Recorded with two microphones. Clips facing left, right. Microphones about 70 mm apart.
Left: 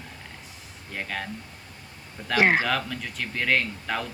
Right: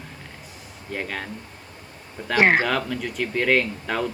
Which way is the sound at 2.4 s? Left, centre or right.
Right.